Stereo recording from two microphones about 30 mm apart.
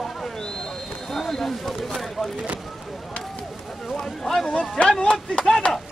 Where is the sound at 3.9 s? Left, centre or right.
Centre.